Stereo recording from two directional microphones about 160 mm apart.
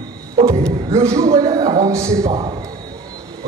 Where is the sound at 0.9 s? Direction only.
20° right (ahead or behind).